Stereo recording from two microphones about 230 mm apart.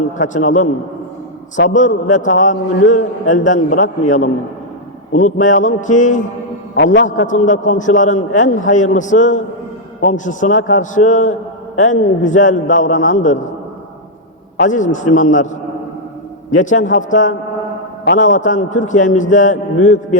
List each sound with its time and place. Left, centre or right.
0.2 s a man's voice: left
1.7 s a man's voice: left
6.7 s a man's voice: left
7.2 s a man's voice: left
14.6 s a man's voice: left
16.5 s a man's voice: left